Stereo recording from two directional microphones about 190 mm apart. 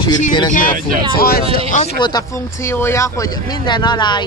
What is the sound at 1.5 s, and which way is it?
Speech, 40° left (ahead or behind).